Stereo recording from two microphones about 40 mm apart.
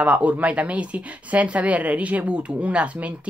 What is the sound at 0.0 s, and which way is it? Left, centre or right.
Speech, right.